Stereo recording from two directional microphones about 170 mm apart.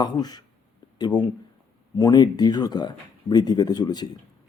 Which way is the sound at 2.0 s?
25° left (ahead or behind).